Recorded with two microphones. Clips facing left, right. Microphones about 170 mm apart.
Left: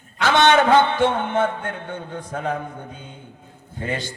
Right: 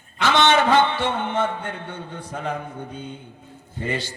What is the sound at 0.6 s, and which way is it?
Music, 50° left (ahead or behind).